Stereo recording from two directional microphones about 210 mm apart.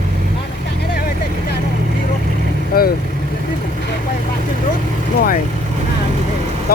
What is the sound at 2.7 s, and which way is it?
Vehicle, 45° left (ahead or behind).